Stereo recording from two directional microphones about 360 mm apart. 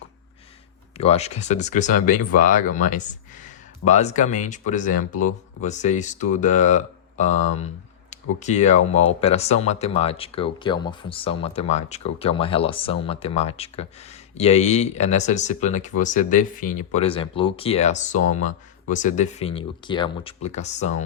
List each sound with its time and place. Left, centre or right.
0.9 s speech: centre